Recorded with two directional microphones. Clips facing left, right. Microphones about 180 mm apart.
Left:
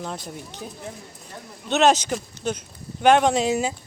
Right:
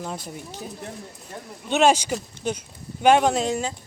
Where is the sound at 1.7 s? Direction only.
10° right (ahead or behind); by 3.8 s 5° left (ahead or behind).